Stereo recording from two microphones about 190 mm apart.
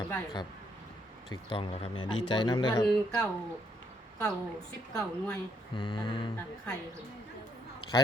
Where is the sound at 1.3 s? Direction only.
25° left (ahead or behind).